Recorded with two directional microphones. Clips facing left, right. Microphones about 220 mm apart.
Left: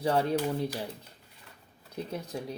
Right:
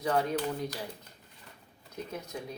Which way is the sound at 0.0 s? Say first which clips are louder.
Left 2 dB; 30° left (ahead or behind).